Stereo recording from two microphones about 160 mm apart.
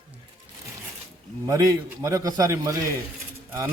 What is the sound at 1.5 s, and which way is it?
A man's voice, 20° right (ahead or behind).